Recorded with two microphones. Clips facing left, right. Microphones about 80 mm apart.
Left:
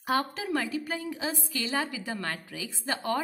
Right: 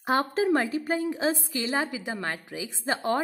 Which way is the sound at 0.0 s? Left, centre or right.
Right.